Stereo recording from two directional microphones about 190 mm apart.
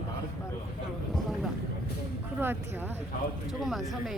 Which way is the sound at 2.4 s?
10° right (ahead or behind).